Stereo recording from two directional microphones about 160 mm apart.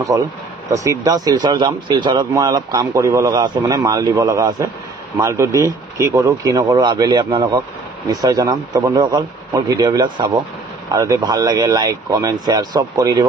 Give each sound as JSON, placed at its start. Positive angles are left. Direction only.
{"t": 0.1, "sound": "speech", "side_deg": -20}